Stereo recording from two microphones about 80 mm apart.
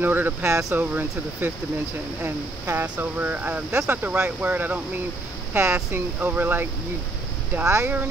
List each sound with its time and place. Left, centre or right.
0.0 s speech: right
0.7 s speech: right